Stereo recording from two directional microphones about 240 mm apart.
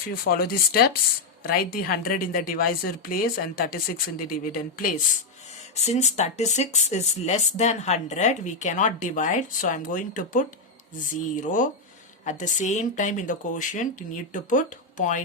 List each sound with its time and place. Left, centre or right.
0.3 s a woman's voice: left